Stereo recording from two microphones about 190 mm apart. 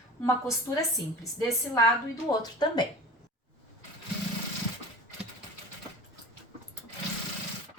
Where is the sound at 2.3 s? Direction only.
20° left (ahead or behind).